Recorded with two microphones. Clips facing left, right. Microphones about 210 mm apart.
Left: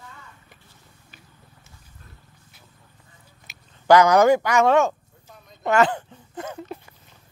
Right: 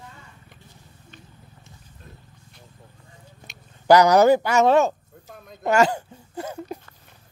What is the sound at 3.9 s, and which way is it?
Speech, 40° right (ahead or behind).